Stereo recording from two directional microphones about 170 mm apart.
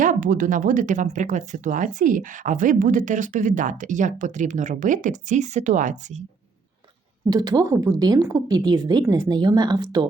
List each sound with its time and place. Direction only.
0.0 s speech: 50° right (ahead or behind)
7.3 s a woman's voice: 20° right (ahead or behind)